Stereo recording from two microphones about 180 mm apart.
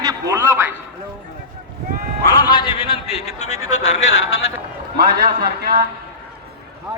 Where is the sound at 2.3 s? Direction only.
25° left (ahead or behind).